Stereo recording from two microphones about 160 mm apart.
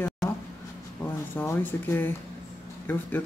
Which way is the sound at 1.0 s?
15° left (ahead or behind).